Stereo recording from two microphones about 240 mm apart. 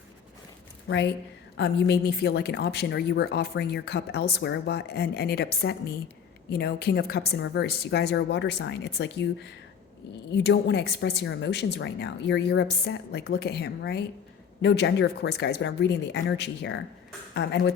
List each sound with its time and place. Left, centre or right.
0.9 s a woman's voice: left